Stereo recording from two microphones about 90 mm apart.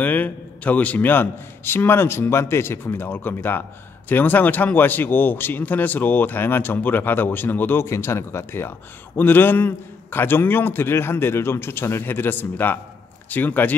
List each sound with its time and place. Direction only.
0.0 s speech: 20° left (ahead or behind)